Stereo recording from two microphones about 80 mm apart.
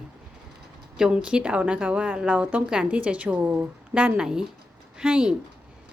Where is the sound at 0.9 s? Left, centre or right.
Centre.